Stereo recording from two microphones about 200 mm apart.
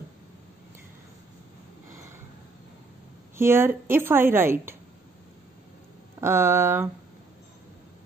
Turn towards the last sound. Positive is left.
turn(degrees=-10)  # may be behind; listen again after turning